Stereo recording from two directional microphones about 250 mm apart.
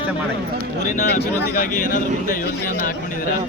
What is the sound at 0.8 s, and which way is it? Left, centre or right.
Speech, left.